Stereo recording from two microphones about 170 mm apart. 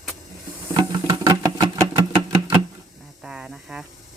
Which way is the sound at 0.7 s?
20° right (ahead or behind).